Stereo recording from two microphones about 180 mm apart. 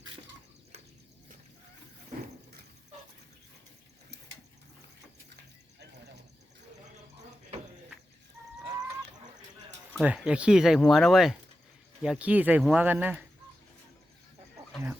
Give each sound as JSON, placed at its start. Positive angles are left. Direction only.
{"t": 10.0, "sound": "speech", "side_deg": -5}